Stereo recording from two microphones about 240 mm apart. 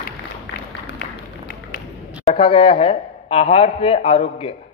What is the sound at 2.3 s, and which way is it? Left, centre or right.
A man's voice, left.